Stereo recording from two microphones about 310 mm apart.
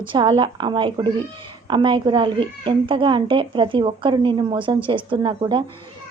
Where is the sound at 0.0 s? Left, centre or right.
Centre.